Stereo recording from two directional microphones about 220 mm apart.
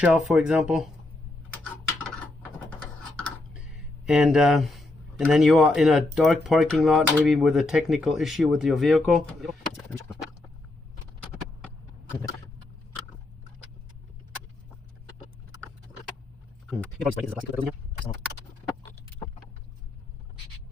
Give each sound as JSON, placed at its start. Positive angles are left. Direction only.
{"t": 0.0, "sound": "speech", "side_deg": -5}
{"t": 2.7, "sound": "a sound", "side_deg": 5}
{"t": 4.0, "sound": "speech", "side_deg": 0}
{"t": 11.6, "sound": "clip-clop", "side_deg": 10}
{"t": 16.8, "sound": "speech", "side_deg": 5}